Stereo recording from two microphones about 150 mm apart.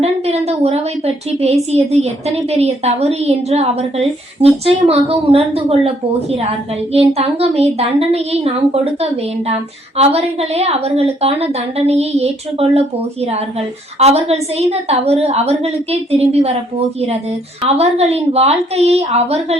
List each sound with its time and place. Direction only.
0.0 s a woman's voice: 45° right (ahead or behind)
6.9 s a woman's voice: 45° right (ahead or behind)
14.0 s a woman's voice: 45° right (ahead or behind)
17.6 s a woman's voice: 45° right (ahead or behind)